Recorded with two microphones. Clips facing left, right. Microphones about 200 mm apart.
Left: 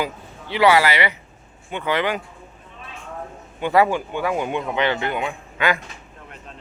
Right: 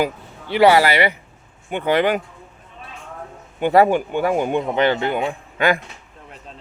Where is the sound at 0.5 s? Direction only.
40° right (ahead or behind).